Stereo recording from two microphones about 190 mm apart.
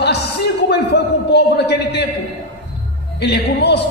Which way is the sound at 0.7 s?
60° left (ahead or behind).